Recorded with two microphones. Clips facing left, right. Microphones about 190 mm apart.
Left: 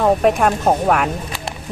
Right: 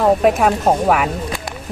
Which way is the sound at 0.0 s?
5° right (ahead or behind).